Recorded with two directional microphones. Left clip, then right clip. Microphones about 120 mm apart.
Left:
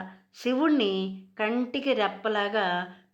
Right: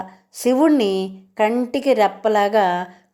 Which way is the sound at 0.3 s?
40° right (ahead or behind).